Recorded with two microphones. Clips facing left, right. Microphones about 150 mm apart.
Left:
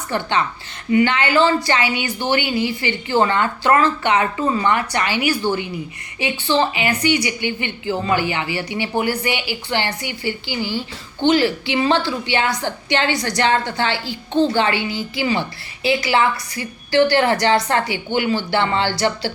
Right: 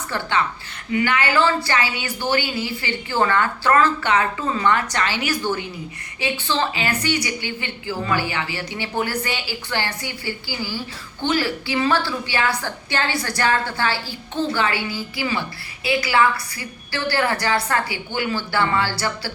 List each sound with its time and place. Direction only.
0.1 s a woman's voice: 20° left (ahead or behind)